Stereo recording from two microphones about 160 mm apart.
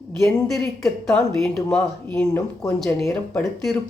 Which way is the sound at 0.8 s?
Centre (ahead or behind).